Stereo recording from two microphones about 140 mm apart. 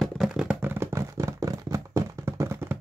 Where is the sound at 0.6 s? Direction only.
15° right (ahead or behind).